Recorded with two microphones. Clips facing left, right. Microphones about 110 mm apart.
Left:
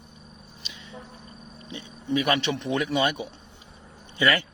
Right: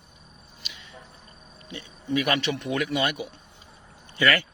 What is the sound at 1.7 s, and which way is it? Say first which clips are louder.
Speech: left 1 dB; 20° left (ahead or behind).